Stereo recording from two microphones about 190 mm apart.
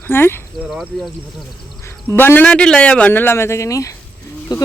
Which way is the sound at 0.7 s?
Centre (ahead or behind).